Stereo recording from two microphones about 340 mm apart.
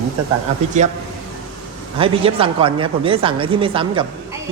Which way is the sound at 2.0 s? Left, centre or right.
Centre.